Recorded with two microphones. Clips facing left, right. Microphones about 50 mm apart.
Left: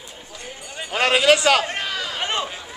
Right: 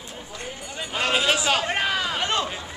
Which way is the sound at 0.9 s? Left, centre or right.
Left.